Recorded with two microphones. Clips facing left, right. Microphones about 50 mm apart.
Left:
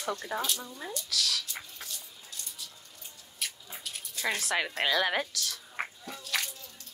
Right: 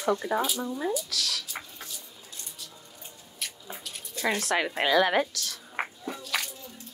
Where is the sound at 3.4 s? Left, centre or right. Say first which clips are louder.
Even; centre.